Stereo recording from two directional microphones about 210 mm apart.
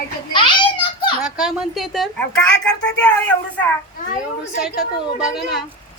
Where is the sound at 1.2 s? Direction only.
Centre (ahead or behind).